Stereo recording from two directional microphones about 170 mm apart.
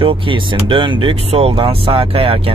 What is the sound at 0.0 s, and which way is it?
Speech, 30° right (ahead or behind).